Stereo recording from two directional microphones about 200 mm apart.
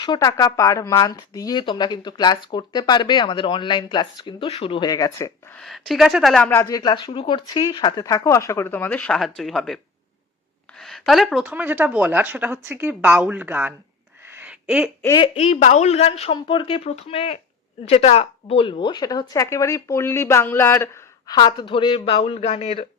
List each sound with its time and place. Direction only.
0.0 s speech: 20° left (ahead or behind)
5.5 s speech: centre (ahead or behind)
14.3 s a sound: 10° right (ahead or behind)
15.0 s speech: 20° left (ahead or behind)
15.4 s speech: 30° left (ahead or behind)